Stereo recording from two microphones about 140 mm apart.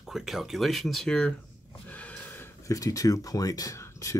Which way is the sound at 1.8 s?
10° left (ahead or behind).